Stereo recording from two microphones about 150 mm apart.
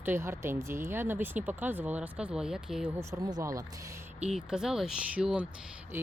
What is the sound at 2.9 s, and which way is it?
Speech, 25° right (ahead or behind).